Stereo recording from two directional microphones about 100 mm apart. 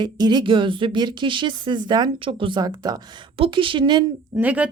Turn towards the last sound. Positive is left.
turn(degrees=-15)  # may be behind; listen again after turning